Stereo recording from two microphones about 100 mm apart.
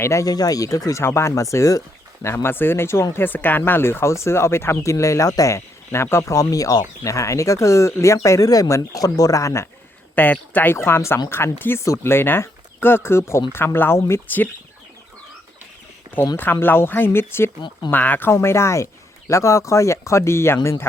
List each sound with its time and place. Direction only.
0.0 s speech: 30° left (ahead or behind)
10.2 s speech: 20° left (ahead or behind)
16.4 s speech: 20° left (ahead or behind)